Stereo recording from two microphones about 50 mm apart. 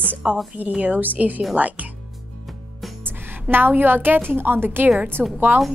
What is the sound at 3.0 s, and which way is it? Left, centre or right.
Music, right.